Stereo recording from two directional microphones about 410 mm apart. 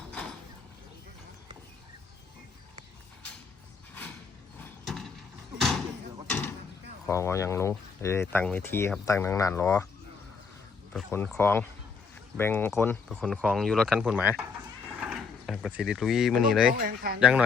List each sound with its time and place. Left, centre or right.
4.9 s mechanisms: centre
5.5 s door: centre
7.1 s speech: centre
10.9 s speech: centre
16.7 s speech: right
17.2 s speech: centre